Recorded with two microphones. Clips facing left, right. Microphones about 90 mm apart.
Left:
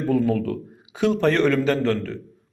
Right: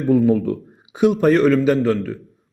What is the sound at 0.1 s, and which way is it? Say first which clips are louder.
A man's voice: right 6 dB; 20° right (ahead or behind).